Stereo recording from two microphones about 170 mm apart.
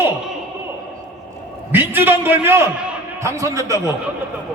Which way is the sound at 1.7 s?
10° right (ahead or behind).